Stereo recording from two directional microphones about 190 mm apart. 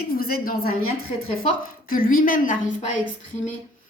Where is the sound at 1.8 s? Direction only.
50° left (ahead or behind).